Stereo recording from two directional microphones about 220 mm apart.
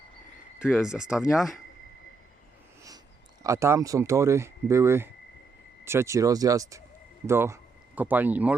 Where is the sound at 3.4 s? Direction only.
15° right (ahead or behind).